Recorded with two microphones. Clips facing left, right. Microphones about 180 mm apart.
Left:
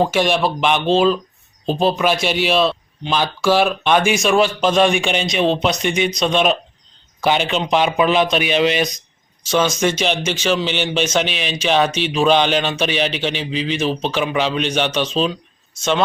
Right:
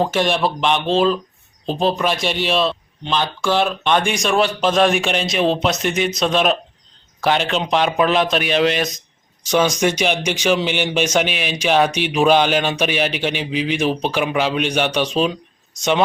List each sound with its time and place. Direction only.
0.0 s a man's voice: centre (ahead or behind)
9.4 s speech: 15° right (ahead or behind)